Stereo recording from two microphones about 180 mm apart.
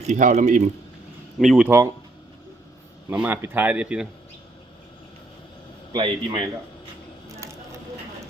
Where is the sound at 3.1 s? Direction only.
10° right (ahead or behind).